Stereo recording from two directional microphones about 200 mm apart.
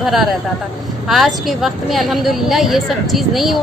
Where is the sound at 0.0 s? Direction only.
Centre (ahead or behind).